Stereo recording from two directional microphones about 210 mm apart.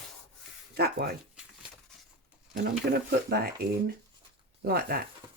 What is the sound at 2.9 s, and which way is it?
Speech, 45° right (ahead or behind).